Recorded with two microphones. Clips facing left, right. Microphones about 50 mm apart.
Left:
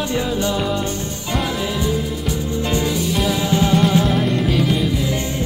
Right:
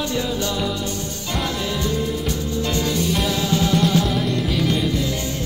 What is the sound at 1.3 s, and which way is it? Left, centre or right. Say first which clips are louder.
Music: left 3 dB; centre.